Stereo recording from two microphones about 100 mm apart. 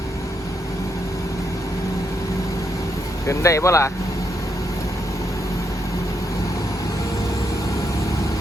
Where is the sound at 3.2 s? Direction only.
30° left (ahead or behind).